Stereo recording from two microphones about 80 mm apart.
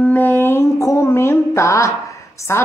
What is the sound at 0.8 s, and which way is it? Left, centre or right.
Speech, left.